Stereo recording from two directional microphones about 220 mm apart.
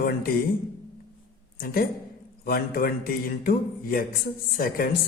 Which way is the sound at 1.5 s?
40° left (ahead or behind).